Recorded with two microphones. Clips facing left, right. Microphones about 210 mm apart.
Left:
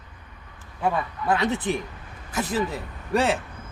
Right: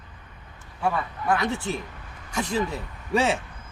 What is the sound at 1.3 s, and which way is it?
Speech, 20° left (ahead or behind).